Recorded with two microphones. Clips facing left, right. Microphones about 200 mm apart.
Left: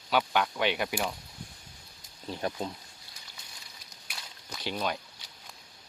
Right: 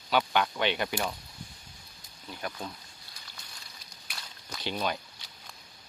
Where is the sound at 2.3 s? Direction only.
25° left (ahead or behind).